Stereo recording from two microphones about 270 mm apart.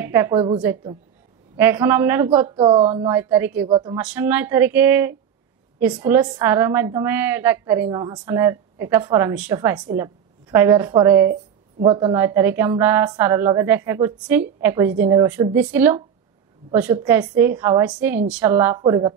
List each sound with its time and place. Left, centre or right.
0.0 s a woman's voice: centre
1.6 s a woman's voice: centre